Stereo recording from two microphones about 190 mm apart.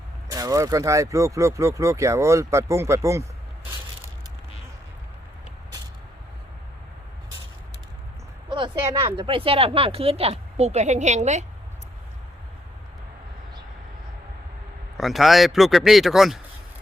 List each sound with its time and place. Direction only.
0.3 s speech: 20° right (ahead or behind)
8.4 s a sound: 25° right (ahead or behind)
8.9 s speech: 30° right (ahead or behind)
14.9 s speech: centre (ahead or behind)